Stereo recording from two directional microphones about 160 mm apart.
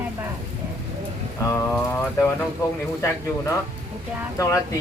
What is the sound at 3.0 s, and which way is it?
Speech, 15° left (ahead or behind).